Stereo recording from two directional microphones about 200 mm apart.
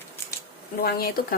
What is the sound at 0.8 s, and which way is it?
Speech, 50° left (ahead or behind).